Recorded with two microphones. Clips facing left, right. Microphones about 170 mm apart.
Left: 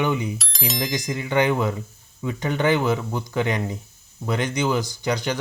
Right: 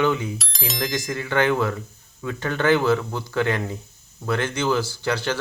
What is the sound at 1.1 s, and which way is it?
Speech, 15° left (ahead or behind).